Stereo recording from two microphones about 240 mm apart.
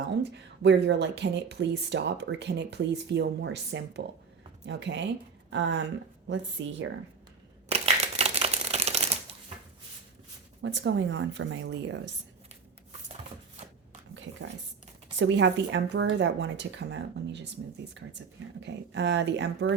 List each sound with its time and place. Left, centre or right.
0.2 s speech: right
7.7 s a sound: right
10.6 s speech: right
15.1 s speech: right
18.6 s speech: right